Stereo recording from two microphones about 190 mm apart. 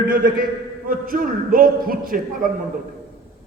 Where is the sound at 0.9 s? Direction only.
45° right (ahead or behind).